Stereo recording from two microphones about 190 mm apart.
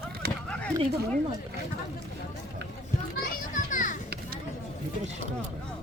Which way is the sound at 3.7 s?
45° left (ahead or behind).